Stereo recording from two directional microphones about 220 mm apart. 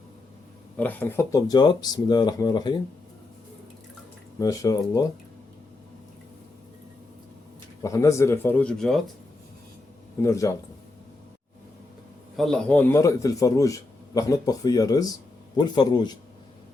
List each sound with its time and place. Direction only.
0.8 s a man's voice: 10° left (ahead or behind)
4.4 s a man's voice: 15° left (ahead or behind)
7.8 s a man's voice: 15° left (ahead or behind)
10.2 s a man's voice: 15° left (ahead or behind)
12.4 s a man's voice: 5° left (ahead or behind); by 16.1 s 20° left (ahead or behind)